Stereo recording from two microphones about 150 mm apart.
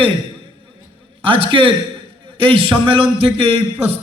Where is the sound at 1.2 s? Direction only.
35° right (ahead or behind).